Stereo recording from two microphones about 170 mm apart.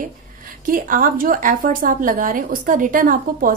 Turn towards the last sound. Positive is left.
turn(degrees=-55)  # may be behind; listen again after turning